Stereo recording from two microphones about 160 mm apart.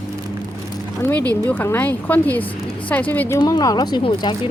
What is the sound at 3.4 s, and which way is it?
Speech, 25° left (ahead or behind).